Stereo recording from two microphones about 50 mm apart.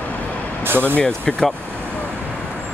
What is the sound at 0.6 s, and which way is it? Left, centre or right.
Speech, right.